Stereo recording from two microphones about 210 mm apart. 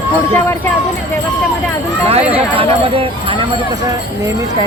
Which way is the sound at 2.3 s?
25° right (ahead or behind).